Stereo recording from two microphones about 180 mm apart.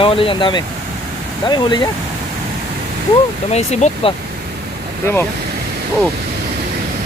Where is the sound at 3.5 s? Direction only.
35° left (ahead or behind).